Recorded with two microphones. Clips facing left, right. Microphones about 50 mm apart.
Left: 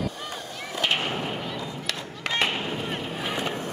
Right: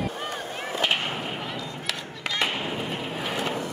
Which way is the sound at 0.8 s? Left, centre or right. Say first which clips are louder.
Left 1 dB; centre.